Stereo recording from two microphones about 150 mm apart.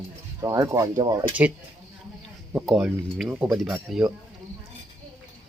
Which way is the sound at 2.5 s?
Centre (ahead or behind).